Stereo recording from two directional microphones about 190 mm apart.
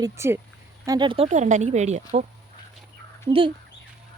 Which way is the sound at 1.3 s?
40° right (ahead or behind).